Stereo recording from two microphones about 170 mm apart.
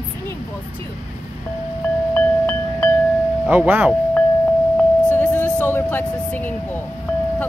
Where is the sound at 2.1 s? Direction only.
5° left (ahead or behind).